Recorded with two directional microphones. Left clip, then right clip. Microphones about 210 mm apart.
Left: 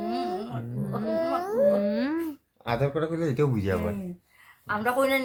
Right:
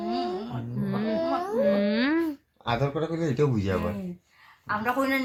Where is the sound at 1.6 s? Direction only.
10° right (ahead or behind).